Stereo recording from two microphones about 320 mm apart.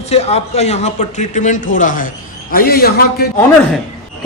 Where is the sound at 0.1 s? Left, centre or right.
Centre.